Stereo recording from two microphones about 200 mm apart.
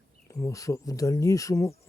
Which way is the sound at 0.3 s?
15° left (ahead or behind).